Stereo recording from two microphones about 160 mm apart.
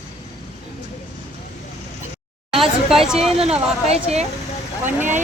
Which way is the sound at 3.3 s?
40° right (ahead or behind).